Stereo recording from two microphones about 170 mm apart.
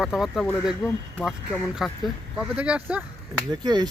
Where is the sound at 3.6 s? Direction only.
25° right (ahead or behind).